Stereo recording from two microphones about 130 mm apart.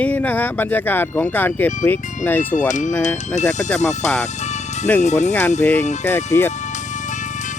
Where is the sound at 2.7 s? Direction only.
70° left (ahead or behind).